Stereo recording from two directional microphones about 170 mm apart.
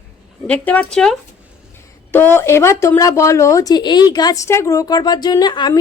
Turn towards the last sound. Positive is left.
turn(degrees=25)  # may be behind; listen again after turning